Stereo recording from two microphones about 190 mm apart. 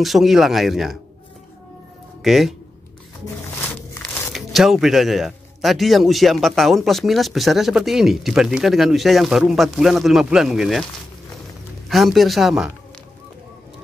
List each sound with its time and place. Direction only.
0.0 s speech: centre (ahead or behind)
2.2 s speech: centre (ahead or behind)
3.6 s a sound: 10° left (ahead or behind)
4.3 s speech: centre (ahead or behind)
11.9 s speech: centre (ahead or behind)